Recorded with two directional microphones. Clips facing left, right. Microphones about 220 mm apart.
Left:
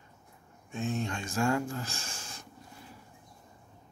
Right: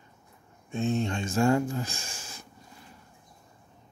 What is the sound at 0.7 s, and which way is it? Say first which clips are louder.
Speech: right 5 dB; 25° right (ahead or behind).